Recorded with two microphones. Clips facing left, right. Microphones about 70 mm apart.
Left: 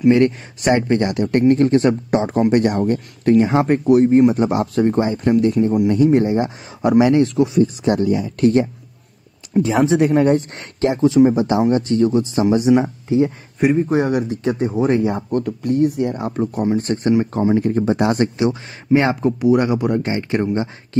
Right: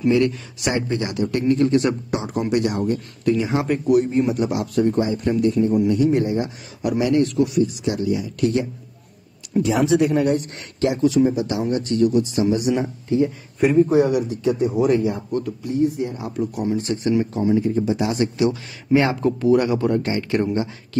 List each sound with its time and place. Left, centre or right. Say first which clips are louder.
0.1 s speech: left 4 dB; left
3.8 s speech: left 6 dB; left
7.6 s speech: left 5 dB; left
9.6 s speech: left 2 dB; left
13.8 s speech: even; left
15.1 s speech: left 4 dB; left
16.3 s speech: left 4 dB; left
17.6 s speech: left 3 dB; left
18.9 s speech: left 2 dB; left